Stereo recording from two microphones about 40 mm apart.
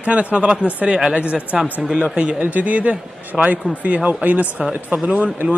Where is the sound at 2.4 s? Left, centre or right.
Right.